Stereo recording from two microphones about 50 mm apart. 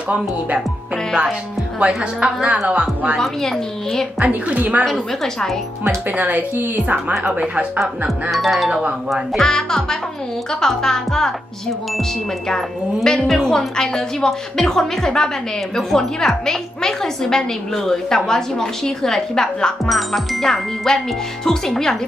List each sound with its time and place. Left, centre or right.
1.8 s a woman's voice: right
3.2 s a woman's voice: centre
4.2 s a woman's voice: right
4.8 s music: centre
6.1 s a woman's voice: right
8.3 s music: centre
9.4 s a woman's voice: centre
12.4 s a woman's voice: centre
19.9 s music: centre
21.5 s a woman's voice: centre